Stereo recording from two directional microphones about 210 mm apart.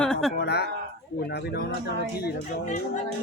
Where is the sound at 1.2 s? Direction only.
50° left (ahead or behind).